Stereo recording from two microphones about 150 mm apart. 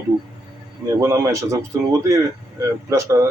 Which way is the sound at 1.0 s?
20° right (ahead or behind).